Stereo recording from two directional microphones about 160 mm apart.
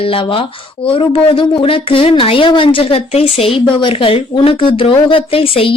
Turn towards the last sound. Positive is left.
turn(degrees=35)  # may be behind; listen again after turning